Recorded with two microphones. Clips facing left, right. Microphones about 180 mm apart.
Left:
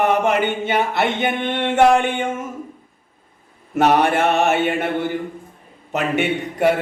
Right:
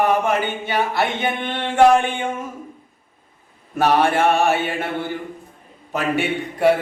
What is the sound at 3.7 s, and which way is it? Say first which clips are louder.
Speech: left 1 dB; 20° left (ahead or behind).